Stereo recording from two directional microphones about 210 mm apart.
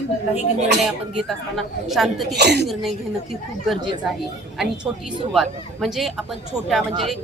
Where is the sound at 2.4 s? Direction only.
55° right (ahead or behind).